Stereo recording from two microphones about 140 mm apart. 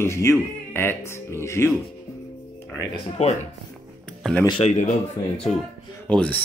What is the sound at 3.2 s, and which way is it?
Speech, 50° left (ahead or behind).